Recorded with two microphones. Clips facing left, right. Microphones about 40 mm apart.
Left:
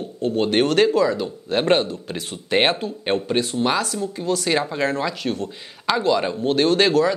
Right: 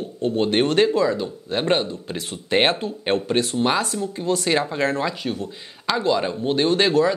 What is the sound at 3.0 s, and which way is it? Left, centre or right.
Speech, centre.